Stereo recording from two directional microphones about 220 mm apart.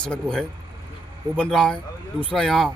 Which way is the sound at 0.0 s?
5° left (ahead or behind).